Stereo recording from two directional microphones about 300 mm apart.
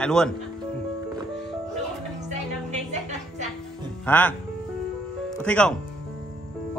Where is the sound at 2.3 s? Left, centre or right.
Right.